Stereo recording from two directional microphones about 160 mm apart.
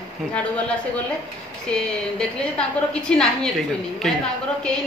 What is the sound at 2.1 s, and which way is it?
A woman's voice, 5° left (ahead or behind).